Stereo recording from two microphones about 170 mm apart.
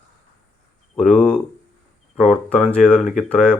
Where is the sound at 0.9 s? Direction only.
5° left (ahead or behind).